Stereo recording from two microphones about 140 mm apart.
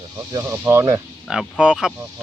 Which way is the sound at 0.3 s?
20° right (ahead or behind).